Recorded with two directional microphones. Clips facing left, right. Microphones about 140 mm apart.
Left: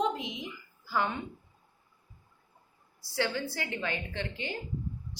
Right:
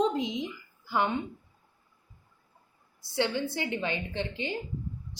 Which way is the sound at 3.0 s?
20° right (ahead or behind).